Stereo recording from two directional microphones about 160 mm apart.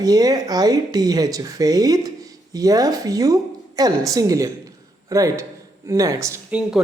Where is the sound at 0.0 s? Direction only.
25° right (ahead or behind).